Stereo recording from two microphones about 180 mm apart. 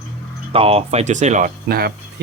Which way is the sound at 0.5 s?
35° right (ahead or behind).